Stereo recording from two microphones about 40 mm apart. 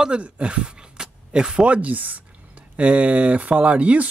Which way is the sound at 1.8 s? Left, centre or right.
Right.